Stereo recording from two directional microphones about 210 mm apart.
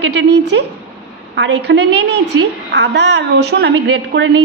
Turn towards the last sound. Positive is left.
turn(degrees=-55)  # may be behind; listen again after turning